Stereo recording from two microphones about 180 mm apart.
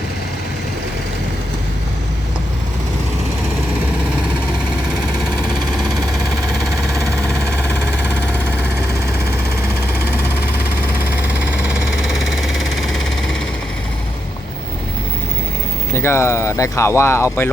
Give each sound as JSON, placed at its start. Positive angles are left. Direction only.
{"t": 6.9, "sound": "music", "side_deg": -15}
{"t": 7.8, "sound": "synthesizer", "side_deg": -10}
{"t": 10.8, "sound": "a sound", "side_deg": -10}
{"t": 15.9, "sound": "speech", "side_deg": 15}